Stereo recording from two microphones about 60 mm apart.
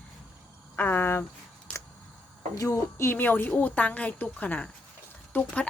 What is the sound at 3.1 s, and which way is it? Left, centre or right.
A woman's voice, left.